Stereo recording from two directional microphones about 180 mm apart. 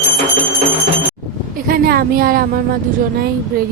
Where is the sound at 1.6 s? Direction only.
55° right (ahead or behind).